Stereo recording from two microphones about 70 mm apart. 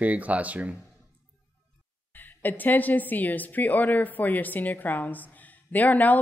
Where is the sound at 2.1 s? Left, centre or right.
Left.